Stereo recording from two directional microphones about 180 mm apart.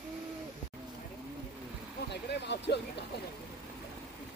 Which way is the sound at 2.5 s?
70° left (ahead or behind).